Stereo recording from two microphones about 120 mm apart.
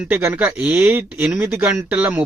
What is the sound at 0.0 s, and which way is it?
A man's voice, 15° right (ahead or behind).